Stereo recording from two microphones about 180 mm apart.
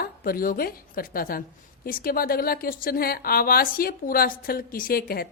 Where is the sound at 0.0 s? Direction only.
55° left (ahead or behind).